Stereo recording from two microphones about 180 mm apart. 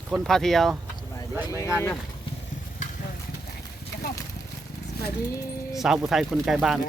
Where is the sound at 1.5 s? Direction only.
20° left (ahead or behind).